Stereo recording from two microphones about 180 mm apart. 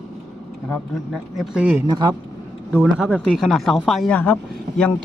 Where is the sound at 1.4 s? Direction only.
5° right (ahead or behind).